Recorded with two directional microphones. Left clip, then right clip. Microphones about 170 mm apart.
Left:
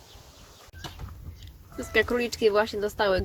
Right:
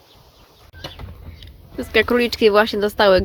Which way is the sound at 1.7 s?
15° right (ahead or behind).